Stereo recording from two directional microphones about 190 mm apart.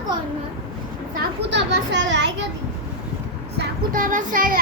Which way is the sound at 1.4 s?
65° right (ahead or behind).